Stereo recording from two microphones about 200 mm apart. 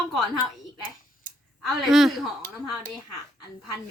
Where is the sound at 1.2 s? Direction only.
45° right (ahead or behind).